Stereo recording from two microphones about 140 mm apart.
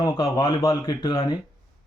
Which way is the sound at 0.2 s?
35° left (ahead or behind).